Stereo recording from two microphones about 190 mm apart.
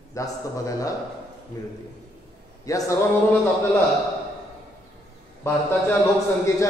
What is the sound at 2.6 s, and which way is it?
Speech, 15° left (ahead or behind).